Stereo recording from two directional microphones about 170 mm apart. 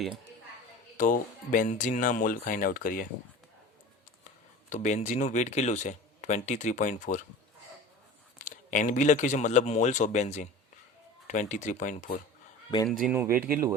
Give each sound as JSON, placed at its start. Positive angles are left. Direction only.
{"t": 0.9, "sound": "speech", "side_deg": 50}
{"t": 4.7, "sound": "speech", "side_deg": 45}
{"t": 8.4, "sound": "speech", "side_deg": 50}
{"t": 12.9, "sound": "speech", "side_deg": 0}
{"t": 13.1, "sound": "speech", "side_deg": -15}